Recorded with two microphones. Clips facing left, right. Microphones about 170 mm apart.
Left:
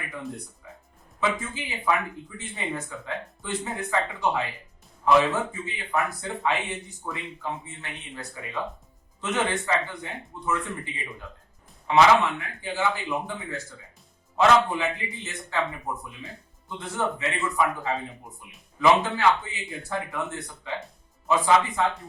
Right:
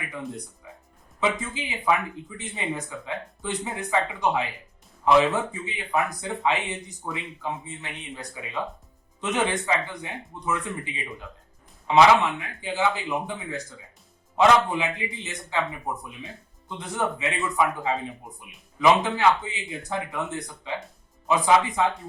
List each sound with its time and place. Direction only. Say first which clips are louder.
1.2 s speech: right 1 dB; 20° right (ahead or behind)
16.6 s speech: right 1 dB; 15° right (ahead or behind)